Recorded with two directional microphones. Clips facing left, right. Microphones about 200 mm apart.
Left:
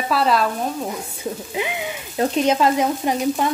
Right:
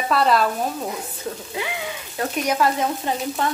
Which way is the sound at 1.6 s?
20° left (ahead or behind).